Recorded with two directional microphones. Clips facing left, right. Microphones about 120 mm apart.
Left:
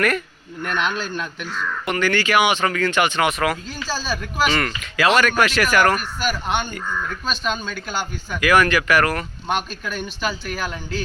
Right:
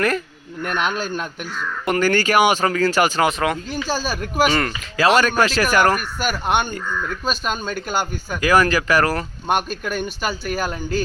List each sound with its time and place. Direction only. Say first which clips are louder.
0.6 s speech: right 1 dB; 45° right (ahead or behind); by 3.6 s 25° right (ahead or behind)
4.0 s a man's voice: right 1 dB; 50° right (ahead or behind)
4.5 s speech: right 1 dB; 30° right (ahead or behind)
6.0 s a man's voice: right 1 dB; 50° right (ahead or behind)
8.4 s speech: even; 30° right (ahead or behind)
9.5 s a man's voice: right 4 dB; 50° right (ahead or behind)